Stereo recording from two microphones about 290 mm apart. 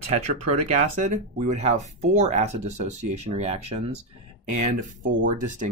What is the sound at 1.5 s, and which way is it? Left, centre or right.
Speech, right.